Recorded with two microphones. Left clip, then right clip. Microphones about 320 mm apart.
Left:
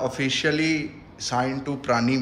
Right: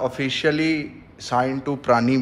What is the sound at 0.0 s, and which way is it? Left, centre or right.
A man's voice, centre.